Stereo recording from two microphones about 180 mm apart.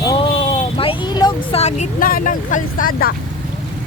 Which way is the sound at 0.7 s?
30° left (ahead or behind).